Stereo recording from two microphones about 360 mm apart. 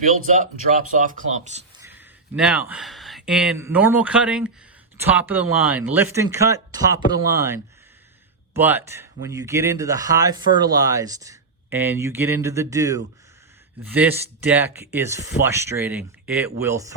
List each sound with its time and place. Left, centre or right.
0.9 s speech: right
1.8 s speech: centre